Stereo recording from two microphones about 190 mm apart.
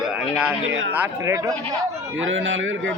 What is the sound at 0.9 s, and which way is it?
Speech, 15° right (ahead or behind).